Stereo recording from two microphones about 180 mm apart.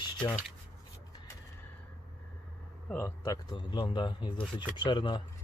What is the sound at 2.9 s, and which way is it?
Speech, 15° left (ahead or behind).